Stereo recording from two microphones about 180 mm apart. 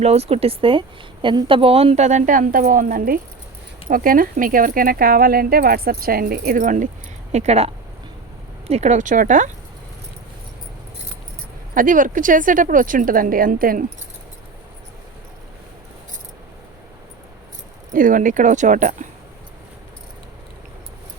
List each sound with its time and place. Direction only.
0.0 s speech: 35° right (ahead or behind)
7.3 s speech: 35° right (ahead or behind)
11.7 s speech: 50° right (ahead or behind)
17.9 s speech: 50° right (ahead or behind)